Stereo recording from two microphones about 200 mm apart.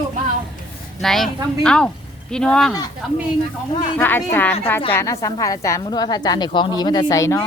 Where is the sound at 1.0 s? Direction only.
Centre (ahead or behind).